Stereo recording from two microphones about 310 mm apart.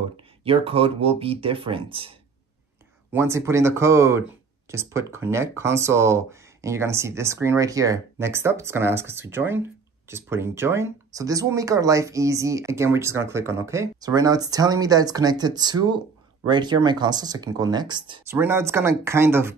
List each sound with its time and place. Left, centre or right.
0.4 s speech: centre